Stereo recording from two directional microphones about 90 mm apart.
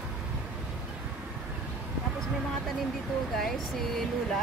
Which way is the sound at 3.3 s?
Centre (ahead or behind).